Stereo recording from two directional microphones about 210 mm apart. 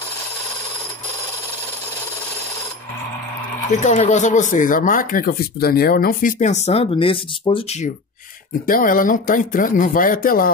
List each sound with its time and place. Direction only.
3.8 s speech: 35° left (ahead or behind)
8.6 s speech: 40° left (ahead or behind)